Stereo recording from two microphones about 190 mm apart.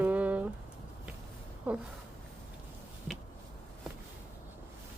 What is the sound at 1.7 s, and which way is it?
Speech, 10° right (ahead or behind).